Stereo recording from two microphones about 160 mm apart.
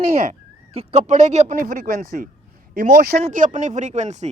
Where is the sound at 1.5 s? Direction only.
60° right (ahead or behind).